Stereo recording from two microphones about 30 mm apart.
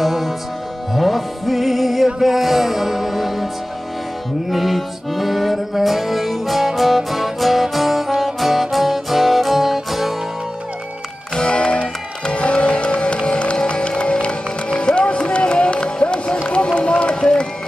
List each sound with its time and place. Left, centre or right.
0.0 s music: centre
4.5 s music: centre
11.3 s music: left
16.6 s run: left